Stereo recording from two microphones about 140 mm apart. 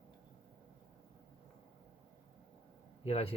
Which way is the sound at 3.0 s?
45° left (ahead or behind).